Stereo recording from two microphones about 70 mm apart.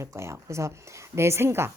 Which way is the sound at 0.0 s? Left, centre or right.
Right.